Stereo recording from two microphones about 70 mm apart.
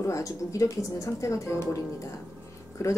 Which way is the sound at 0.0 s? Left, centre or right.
Left.